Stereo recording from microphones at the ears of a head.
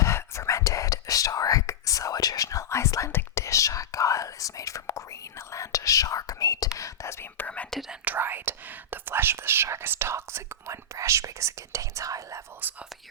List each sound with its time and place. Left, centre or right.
0.0 s whispering: left
8.0 s whispering: right